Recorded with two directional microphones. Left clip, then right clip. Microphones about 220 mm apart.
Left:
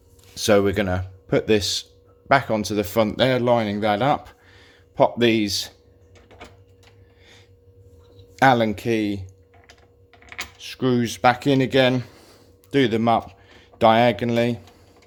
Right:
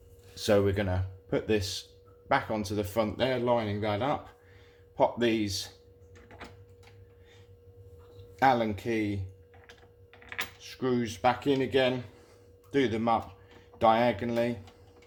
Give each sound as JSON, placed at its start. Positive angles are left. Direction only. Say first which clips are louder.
{"t": 0.3, "sound": "speech", "louder": "left 8 dB", "side_deg": 30}
{"t": 8.4, "sound": "speech", "louder": "left 8 dB", "side_deg": 40}
{"t": 10.6, "sound": "speech", "louder": "left 9 dB", "side_deg": 40}